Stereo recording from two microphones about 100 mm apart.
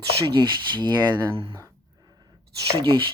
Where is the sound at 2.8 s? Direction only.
55° right (ahead or behind).